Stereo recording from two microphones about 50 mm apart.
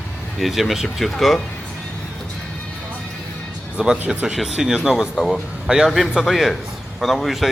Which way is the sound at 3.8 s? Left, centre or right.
Centre.